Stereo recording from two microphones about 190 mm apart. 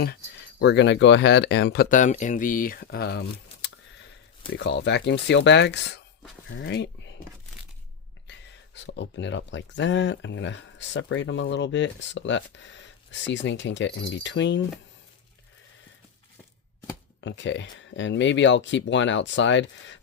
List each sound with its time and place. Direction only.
0.0 s speech: 60° left (ahead or behind)
2.0 s speech: 40° left (ahead or behind); by 3.7 s 60° left (ahead or behind)
4.5 s speech: 70° left (ahead or behind)
8.3 s speech: 65° left (ahead or behind)
17.2 s speech: 75° left (ahead or behind)